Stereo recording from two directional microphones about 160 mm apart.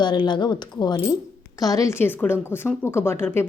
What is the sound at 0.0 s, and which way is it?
Speech, 30° left (ahead or behind).